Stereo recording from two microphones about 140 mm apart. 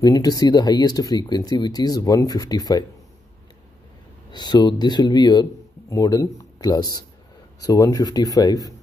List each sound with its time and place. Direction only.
0.0 s speech: 25° left (ahead or behind)
4.3 s speech: 30° left (ahead or behind)